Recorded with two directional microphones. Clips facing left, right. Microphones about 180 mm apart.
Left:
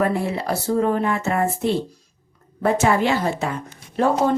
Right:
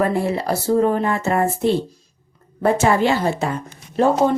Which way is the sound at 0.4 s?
35° right (ahead or behind).